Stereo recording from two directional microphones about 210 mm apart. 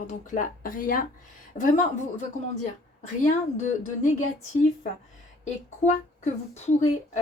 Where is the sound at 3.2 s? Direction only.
35° left (ahead or behind).